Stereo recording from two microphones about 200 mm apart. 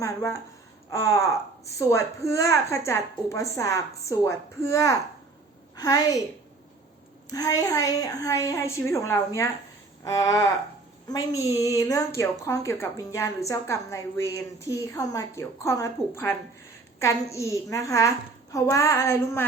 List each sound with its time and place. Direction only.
0.0 s a woman's voice: 15° left (ahead or behind)
7.3 s a woman's voice: 15° left (ahead or behind)